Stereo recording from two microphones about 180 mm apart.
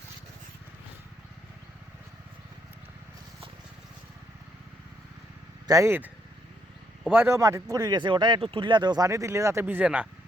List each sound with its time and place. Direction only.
5.6 s speech: 15° right (ahead or behind)
7.1 s speech: 10° right (ahead or behind)